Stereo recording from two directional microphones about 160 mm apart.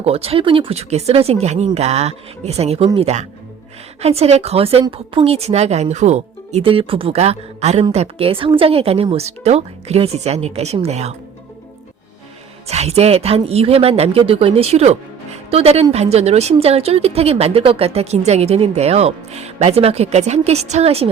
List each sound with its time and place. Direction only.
0.0 s speech: 40° right (ahead or behind)
12.6 s speech: 40° right (ahead or behind)